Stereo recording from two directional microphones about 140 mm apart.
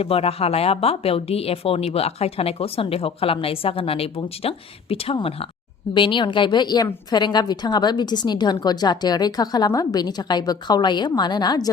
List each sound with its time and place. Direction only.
0.0 s a woman's voice: 45° left (ahead or behind); by 11.7 s 30° left (ahead or behind)